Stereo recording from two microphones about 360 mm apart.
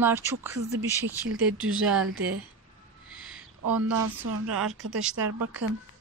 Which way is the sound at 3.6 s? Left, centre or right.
Right.